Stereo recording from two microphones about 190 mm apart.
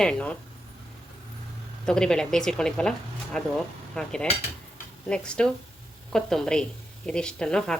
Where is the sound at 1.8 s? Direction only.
5° left (ahead or behind).